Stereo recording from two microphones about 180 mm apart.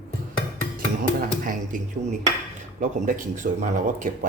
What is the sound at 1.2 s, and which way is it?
Speech, 50° right (ahead or behind).